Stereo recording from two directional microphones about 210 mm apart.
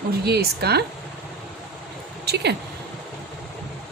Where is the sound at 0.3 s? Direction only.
50° right (ahead or behind).